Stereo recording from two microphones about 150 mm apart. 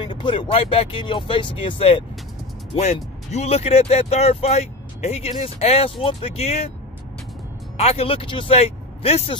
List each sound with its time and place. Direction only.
0.0 s speech: 35° left (ahead or behind)
7.7 s speech: 45° left (ahead or behind)